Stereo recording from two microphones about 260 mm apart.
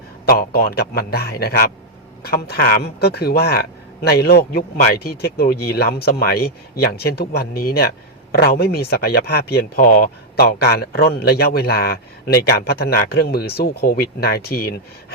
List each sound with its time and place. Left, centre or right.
0.3 s speech: left